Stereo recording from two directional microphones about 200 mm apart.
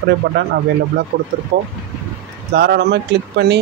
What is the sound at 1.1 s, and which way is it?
Speech, 45° right (ahead or behind).